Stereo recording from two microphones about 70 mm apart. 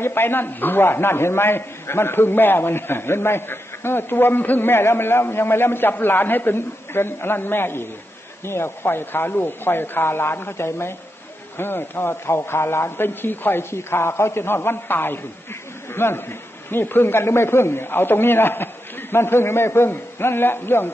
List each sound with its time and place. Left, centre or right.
0.0 s a man's voice: left